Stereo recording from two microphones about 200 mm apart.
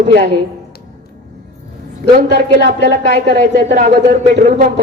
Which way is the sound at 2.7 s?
55° right (ahead or behind).